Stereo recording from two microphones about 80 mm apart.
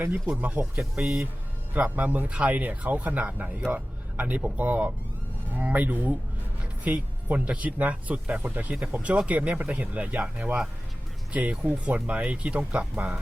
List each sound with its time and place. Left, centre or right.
0.3 s speech: centre